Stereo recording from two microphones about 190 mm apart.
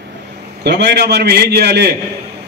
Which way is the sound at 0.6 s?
65° right (ahead or behind).